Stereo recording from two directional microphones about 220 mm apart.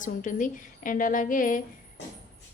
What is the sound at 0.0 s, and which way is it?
A woman's voice, 35° left (ahead or behind).